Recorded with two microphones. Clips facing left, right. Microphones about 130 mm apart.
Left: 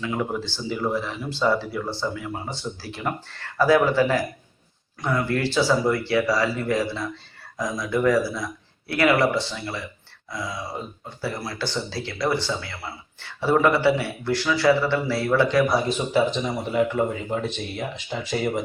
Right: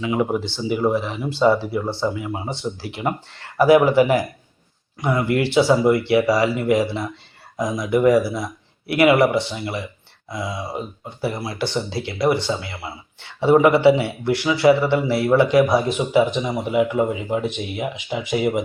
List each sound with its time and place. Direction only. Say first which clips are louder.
0.0 s speech: right 5 dB; 20° right (ahead or behind)